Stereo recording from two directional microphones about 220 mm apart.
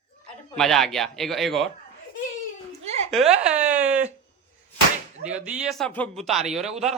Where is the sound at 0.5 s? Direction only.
Centre (ahead or behind).